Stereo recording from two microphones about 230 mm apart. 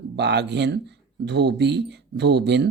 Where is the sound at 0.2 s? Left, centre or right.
Right.